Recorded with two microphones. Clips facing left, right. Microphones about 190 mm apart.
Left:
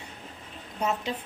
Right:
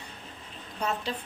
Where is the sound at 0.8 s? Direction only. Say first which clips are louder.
Left 2 dB; 20° left (ahead or behind).